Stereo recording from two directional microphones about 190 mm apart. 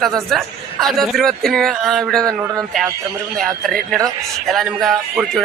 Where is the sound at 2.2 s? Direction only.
20° right (ahead or behind).